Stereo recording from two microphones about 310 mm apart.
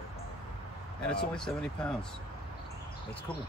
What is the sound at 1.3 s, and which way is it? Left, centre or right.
Speech, centre.